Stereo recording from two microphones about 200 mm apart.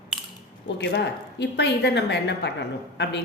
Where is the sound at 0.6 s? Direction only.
60° left (ahead or behind).